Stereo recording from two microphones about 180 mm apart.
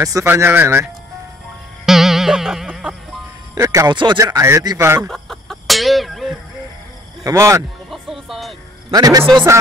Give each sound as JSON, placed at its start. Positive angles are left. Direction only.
{"t": 0.0, "sound": "speech", "side_deg": -15}
{"t": 1.9, "sound": "music", "side_deg": 0}
{"t": 3.5, "sound": "speech", "side_deg": -15}
{"t": 5.0, "sound": "chicken", "side_deg": 0}
{"t": 7.2, "sound": "speech", "side_deg": -15}
{"t": 7.9, "sound": "music", "side_deg": 0}
{"t": 8.9, "sound": "a man's voice", "side_deg": -20}